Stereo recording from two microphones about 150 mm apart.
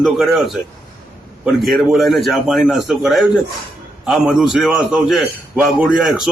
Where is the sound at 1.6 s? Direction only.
Centre (ahead or behind).